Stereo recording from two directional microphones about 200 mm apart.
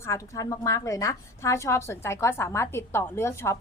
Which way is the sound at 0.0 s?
15° left (ahead or behind).